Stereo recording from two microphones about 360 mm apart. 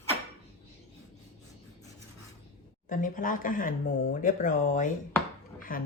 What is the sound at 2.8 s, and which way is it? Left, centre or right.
Speech, left.